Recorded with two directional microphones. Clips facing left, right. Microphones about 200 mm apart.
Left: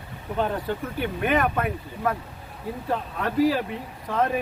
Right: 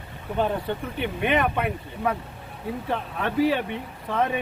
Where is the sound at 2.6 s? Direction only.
Centre (ahead or behind).